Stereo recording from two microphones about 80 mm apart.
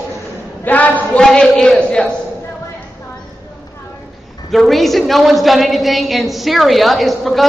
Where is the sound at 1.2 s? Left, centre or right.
Centre.